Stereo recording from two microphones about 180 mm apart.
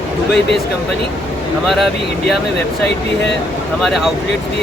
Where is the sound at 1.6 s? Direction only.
Centre (ahead or behind).